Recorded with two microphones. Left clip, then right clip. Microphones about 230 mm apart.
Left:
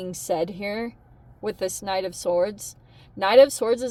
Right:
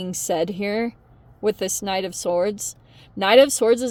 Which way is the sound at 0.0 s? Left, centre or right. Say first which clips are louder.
Right 2 dB; right.